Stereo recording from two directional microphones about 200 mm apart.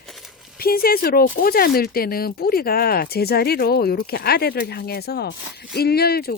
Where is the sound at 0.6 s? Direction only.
50° left (ahead or behind).